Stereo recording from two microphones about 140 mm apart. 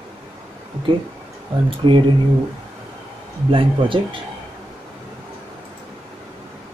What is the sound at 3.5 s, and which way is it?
Speech, 40° right (ahead or behind).